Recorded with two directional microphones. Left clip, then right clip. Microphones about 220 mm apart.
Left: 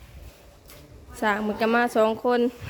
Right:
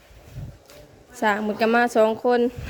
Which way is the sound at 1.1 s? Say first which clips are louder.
Right 2 dB; 5° right (ahead or behind).